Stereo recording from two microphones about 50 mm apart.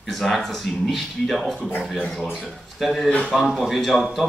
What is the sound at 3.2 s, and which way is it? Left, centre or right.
Speech, centre.